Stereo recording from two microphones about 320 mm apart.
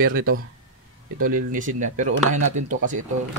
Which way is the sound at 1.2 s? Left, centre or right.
Right.